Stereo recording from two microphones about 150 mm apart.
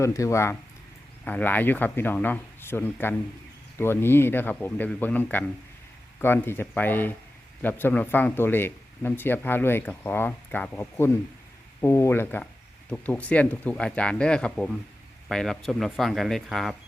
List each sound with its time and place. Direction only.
0.0 s speech: 20° left (ahead or behind); by 16.7 s centre (ahead or behind)